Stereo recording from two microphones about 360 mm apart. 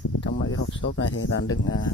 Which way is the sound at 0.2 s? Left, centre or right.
Left.